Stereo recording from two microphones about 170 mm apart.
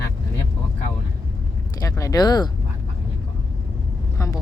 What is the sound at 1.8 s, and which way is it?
Speech, 20° left (ahead or behind).